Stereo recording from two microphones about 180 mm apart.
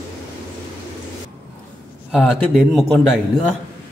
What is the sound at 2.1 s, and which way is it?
A man's voice, centre (ahead or behind).